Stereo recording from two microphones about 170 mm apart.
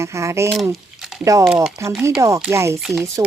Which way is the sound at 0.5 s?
Centre (ahead or behind).